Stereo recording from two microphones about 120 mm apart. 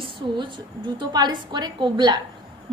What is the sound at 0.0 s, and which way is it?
A woman's voice, 40° right (ahead or behind).